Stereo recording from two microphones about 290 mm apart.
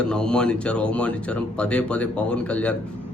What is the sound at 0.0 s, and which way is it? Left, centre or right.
Speech, centre.